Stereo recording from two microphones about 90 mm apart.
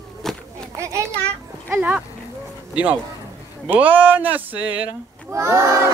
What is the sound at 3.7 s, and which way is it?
Speech, 15° right (ahead or behind).